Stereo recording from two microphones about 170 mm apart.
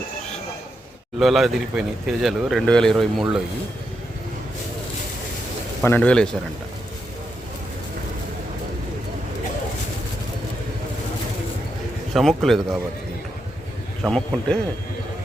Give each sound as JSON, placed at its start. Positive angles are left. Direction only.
{"t": 1.2, "sound": "speech", "side_deg": 0}
{"t": 5.8, "sound": "speech", "side_deg": 10}
{"t": 12.1, "sound": "speech", "side_deg": 0}
{"t": 14.0, "sound": "speech", "side_deg": 5}